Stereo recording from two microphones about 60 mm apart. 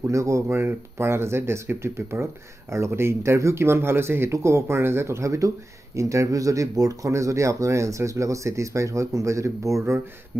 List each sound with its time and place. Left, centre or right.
0.1 s speech: right
7.1 s speech: right